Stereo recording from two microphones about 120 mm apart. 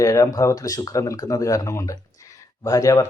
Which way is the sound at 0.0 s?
25° left (ahead or behind).